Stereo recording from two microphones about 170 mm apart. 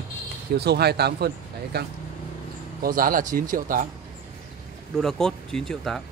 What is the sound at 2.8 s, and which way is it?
Speech, 55° right (ahead or behind).